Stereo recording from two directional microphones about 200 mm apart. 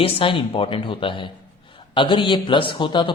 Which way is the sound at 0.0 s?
25° left (ahead or behind).